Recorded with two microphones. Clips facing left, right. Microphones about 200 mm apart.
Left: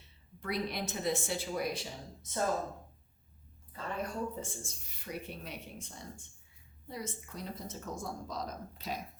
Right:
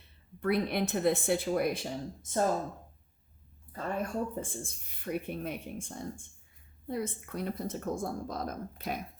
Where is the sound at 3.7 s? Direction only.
50° right (ahead or behind).